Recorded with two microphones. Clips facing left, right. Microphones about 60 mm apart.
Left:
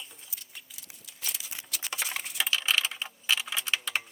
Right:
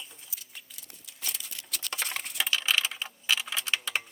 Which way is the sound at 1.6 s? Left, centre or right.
Centre.